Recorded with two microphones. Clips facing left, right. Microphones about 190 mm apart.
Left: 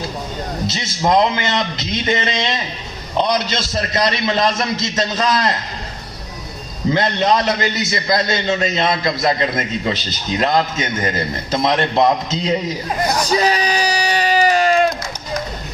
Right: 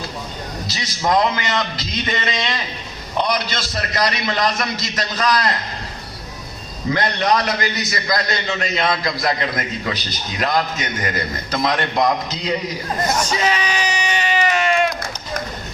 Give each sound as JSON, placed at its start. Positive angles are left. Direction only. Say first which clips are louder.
{"t": 0.7, "sound": "a man's voice", "louder": "left 2 dB", "side_deg": 20}
{"t": 6.9, "sound": "a man's voice", "louder": "left 2 dB", "side_deg": 25}
{"t": 13.2, "sound": "a sound", "louder": "left 4 dB", "side_deg": 35}